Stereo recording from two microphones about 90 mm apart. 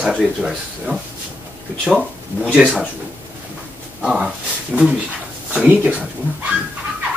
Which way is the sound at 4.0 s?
5° right (ahead or behind).